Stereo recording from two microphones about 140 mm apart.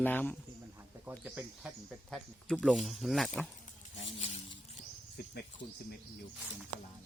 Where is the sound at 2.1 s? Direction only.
10° left (ahead or behind).